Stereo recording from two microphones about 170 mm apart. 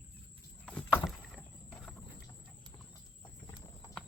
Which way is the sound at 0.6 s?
5° left (ahead or behind).